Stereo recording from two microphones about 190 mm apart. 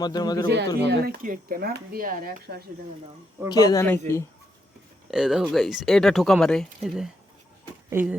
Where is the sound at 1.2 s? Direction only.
50° right (ahead or behind).